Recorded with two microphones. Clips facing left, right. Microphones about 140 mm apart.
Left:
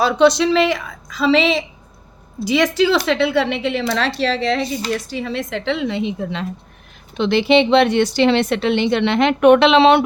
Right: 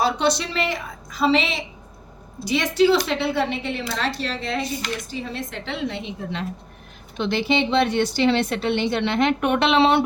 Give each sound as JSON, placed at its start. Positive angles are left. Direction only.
{"t": 0.0, "sound": "a woman's voice", "side_deg": 90}